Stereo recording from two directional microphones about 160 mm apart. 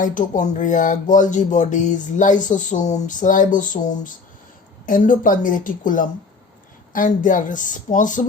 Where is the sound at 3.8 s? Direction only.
25° left (ahead or behind).